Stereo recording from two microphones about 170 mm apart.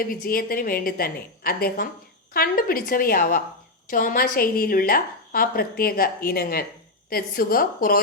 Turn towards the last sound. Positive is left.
turn(degrees=60)  # may be behind; listen again after turning